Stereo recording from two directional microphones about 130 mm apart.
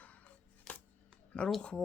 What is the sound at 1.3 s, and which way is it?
Speech, 5° left (ahead or behind).